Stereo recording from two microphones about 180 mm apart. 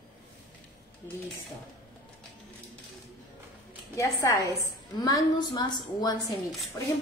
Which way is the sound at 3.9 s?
20° left (ahead or behind).